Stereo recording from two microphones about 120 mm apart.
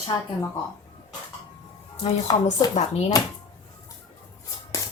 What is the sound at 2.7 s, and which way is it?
Speech, 70° left (ahead or behind).